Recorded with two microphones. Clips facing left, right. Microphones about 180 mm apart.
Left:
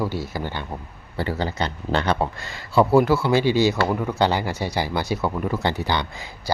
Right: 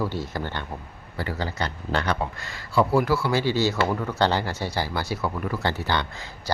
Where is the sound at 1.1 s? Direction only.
25° left (ahead or behind).